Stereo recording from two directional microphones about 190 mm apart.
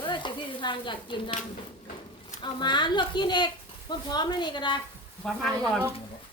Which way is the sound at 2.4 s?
25° left (ahead or behind).